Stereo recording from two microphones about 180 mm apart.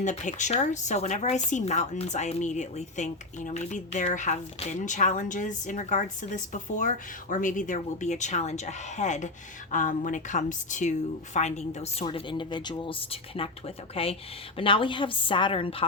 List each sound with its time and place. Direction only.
0.0 s a woman's voice: 40° left (ahead or behind)
12.0 s speech: 25° left (ahead or behind)